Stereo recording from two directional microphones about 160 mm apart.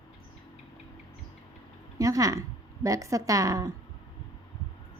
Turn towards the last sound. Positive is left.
turn(degrees=-20)  # may be behind; listen again after turning